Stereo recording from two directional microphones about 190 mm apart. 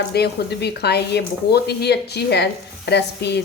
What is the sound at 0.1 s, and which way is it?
Speech, 60° left (ahead or behind).